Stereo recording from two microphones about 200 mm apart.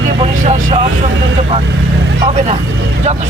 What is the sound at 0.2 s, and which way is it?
Vehicle, 35° right (ahead or behind).